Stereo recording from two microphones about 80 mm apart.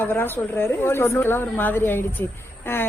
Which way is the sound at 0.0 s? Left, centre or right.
Left.